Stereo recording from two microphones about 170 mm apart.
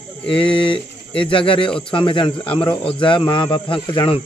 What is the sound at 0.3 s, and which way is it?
Speech, 30° left (ahead or behind).